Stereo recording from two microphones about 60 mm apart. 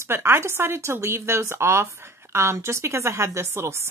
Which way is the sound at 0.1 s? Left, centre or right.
Right.